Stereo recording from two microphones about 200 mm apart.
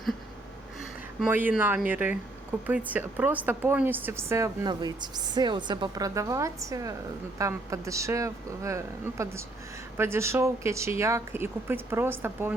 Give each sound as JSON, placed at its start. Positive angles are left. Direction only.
{"t": 1.2, "sound": "speech", "side_deg": -10}